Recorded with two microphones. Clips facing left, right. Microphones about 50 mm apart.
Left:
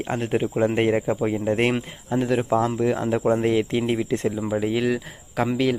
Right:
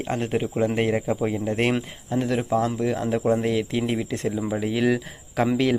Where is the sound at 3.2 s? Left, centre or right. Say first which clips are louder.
Left 2 dB; left.